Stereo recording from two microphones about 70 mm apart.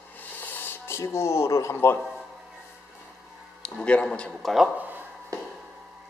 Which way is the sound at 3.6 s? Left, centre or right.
Centre.